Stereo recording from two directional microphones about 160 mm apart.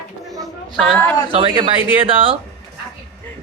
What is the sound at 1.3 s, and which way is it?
A man's voice, 35° right (ahead or behind).